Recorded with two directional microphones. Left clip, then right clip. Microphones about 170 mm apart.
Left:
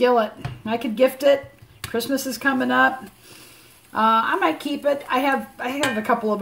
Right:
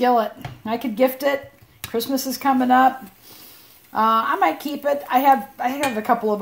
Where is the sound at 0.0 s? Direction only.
50° right (ahead or behind).